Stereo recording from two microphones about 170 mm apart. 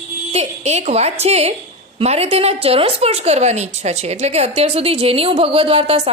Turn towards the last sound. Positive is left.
turn(degrees=-35)  # may be behind; listen again after turning